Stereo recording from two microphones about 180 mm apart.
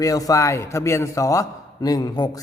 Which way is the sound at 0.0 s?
20° left (ahead or behind).